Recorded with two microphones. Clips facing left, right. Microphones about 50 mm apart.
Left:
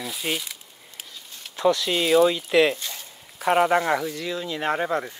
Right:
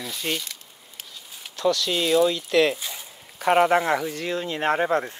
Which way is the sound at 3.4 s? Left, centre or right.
Centre.